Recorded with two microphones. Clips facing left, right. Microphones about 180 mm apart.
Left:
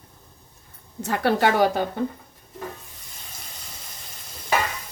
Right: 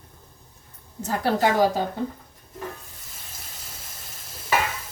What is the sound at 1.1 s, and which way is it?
Speech, 65° left (ahead or behind).